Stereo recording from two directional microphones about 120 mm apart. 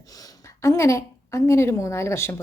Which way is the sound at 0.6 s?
25° left (ahead or behind).